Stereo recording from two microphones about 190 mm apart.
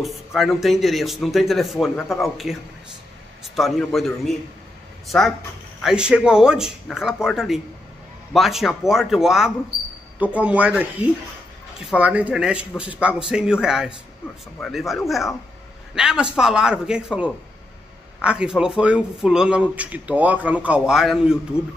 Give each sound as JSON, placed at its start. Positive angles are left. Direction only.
{"t": 0.0, "sound": "speech", "side_deg": 0}